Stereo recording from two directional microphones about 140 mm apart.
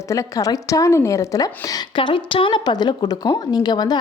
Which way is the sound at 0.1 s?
25° left (ahead or behind).